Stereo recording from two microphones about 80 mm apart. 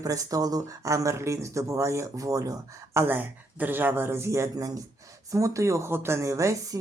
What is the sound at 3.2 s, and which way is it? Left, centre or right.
Speech, right.